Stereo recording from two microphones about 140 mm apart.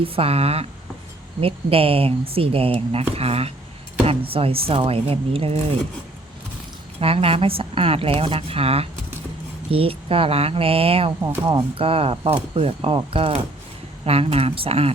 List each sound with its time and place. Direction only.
0.0 s speech: 45° right (ahead or behind)
7.0 s speech: 45° right (ahead or behind)